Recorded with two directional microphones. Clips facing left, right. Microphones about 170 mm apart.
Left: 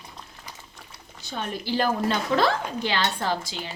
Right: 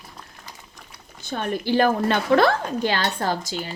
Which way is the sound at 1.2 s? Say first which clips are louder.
Right 5 dB; 50° right (ahead or behind).